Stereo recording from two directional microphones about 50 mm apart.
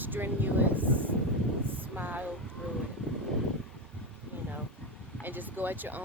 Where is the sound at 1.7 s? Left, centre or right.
Right.